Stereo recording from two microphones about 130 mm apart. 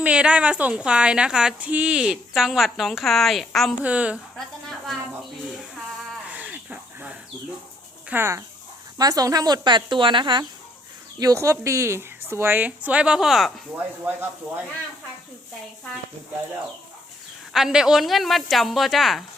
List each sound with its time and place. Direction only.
0.0 s a woman's voice: 10° right (ahead or behind)
3.8 s a woman's voice: 10° right (ahead or behind)
4.4 s a woman's voice: centre (ahead or behind)
6.2 s a sound: 10° right (ahead or behind)
8.1 s speech: 20° right (ahead or behind); by 10.4 s 40° right (ahead or behind)
11.2 s a woman's voice: 25° right (ahead or behind); by 13.5 s centre (ahead or behind)
13.7 s a woman's voice: 15° right (ahead or behind)
17.5 s speech: 5° right (ahead or behind)